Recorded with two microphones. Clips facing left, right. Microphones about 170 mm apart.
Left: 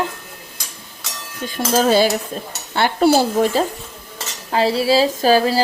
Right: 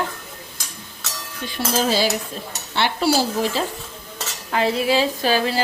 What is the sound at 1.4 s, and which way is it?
Speech, 45° left (ahead or behind).